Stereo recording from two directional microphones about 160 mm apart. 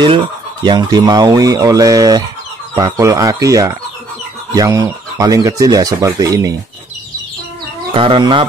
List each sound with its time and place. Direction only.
0.7 s speech: 25° right (ahead or behind)
7.9 s speech: 35° right (ahead or behind)